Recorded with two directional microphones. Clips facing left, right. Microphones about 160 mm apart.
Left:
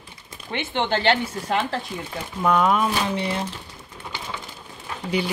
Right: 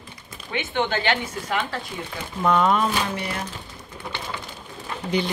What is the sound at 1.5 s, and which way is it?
Speech, 30° left (ahead or behind).